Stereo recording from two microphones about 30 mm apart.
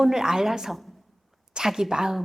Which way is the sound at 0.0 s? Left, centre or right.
Centre.